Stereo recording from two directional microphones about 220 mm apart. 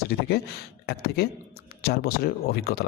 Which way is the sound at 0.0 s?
45° left (ahead or behind).